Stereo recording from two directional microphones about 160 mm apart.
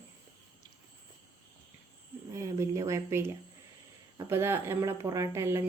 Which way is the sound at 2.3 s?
20° right (ahead or behind).